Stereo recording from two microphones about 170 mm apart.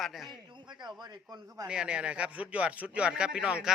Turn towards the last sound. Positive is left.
turn(degrees=-5)  # may be behind; listen again after turning